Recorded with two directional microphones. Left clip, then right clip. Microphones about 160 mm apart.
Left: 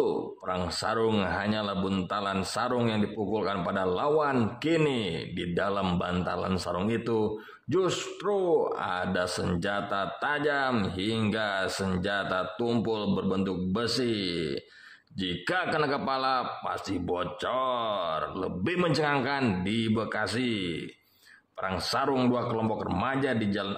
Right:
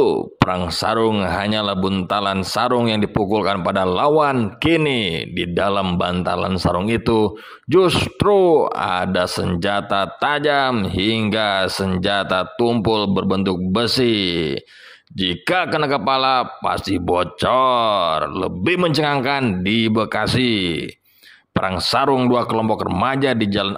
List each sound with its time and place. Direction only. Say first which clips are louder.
0.6 s speech: right 10 dB; 40° right (ahead or behind)